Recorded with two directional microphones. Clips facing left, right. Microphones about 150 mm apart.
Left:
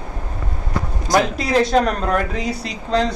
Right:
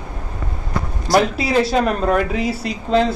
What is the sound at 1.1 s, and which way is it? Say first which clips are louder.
Speech: right 1 dB; centre (ahead or behind).